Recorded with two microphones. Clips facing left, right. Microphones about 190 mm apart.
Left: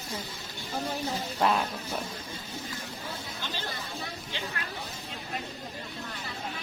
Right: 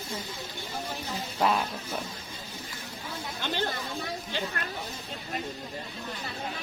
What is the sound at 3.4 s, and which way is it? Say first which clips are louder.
Chatter: right 9 dB; 60° right (ahead or behind).